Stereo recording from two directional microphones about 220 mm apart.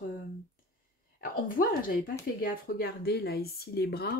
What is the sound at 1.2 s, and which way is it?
Speech, 40° left (ahead or behind).